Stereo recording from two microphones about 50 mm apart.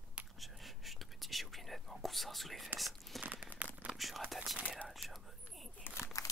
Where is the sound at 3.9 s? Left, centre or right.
Centre.